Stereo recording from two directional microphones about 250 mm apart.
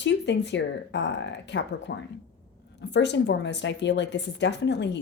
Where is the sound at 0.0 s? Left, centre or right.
Left.